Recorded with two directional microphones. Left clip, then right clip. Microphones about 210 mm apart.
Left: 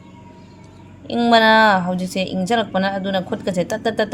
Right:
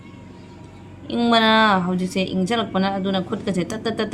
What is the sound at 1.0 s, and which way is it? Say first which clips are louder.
A woman's voice: left 4 dB; 40° left (ahead or behind).